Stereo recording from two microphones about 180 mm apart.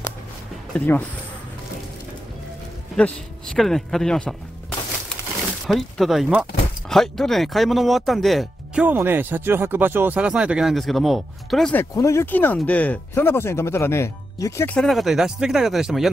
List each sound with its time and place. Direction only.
0.7 s speech: 10° left (ahead or behind)
3.0 s speech: 5° left (ahead or behind)
5.7 s speech: centre (ahead or behind)
11.8 s speech: 15° left (ahead or behind)
14.8 s speech: centre (ahead or behind)